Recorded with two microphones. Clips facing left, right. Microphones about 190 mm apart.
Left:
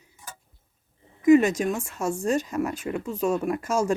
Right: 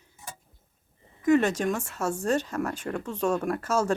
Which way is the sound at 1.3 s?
10° left (ahead or behind).